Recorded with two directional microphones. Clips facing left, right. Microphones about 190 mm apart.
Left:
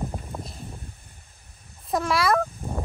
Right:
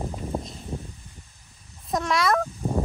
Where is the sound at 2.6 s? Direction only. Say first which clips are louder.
Right 6 dB; 25° right (ahead or behind).